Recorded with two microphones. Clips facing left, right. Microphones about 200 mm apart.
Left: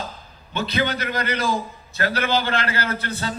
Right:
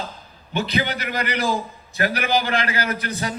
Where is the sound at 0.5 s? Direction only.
15° right (ahead or behind).